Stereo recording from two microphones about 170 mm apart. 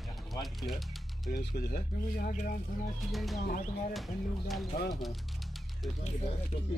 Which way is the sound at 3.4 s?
60° left (ahead or behind).